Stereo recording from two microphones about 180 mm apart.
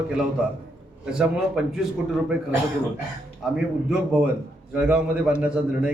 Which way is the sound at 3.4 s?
5° right (ahead or behind).